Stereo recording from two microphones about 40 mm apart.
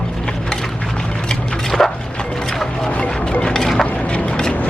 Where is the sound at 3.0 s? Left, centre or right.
Left.